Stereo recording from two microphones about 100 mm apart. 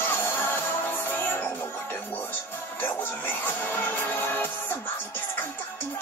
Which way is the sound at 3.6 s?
20° left (ahead or behind).